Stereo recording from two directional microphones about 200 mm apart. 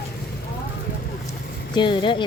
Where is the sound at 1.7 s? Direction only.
25° left (ahead or behind).